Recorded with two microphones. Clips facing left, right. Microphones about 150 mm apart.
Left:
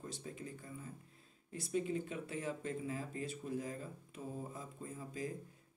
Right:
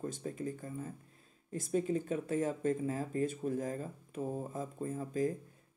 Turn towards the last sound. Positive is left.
turn(degrees=-45)  # may be behind; listen again after turning